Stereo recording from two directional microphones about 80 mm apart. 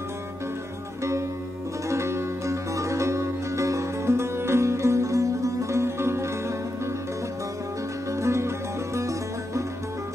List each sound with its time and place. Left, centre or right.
1.9 s music: right
8.1 s music: right